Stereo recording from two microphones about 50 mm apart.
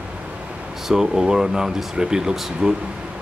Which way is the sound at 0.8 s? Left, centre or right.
Centre.